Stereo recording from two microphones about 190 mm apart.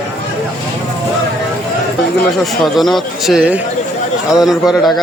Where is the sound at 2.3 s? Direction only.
Centre (ahead or behind).